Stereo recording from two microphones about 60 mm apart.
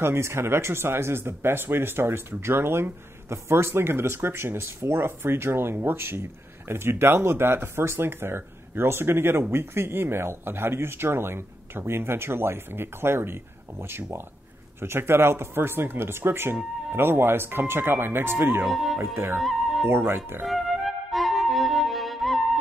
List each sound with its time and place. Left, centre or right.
0.0 s speech: right
18.7 s speech: centre
19.4 s music: centre
19.9 s speech: right
20.4 s music: centre